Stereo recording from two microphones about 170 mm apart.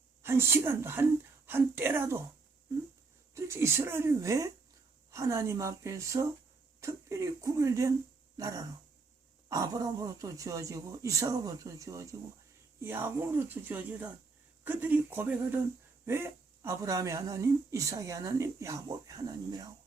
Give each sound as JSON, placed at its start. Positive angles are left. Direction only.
{"t": 0.2, "sound": "speech", "side_deg": -15}
{"t": 3.3, "sound": "speech", "side_deg": -15}